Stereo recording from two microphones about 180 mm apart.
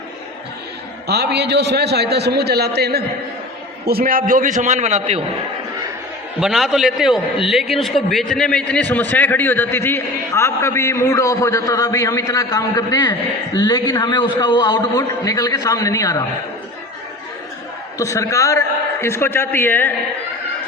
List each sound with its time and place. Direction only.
1.0 s a man's voice: 65° right (ahead or behind); by 5.2 s 35° right (ahead or behind)
6.4 s a man's voice: centre (ahead or behind); by 16.2 s 20° left (ahead or behind)
17.9 s a man's voice: 15° left (ahead or behind)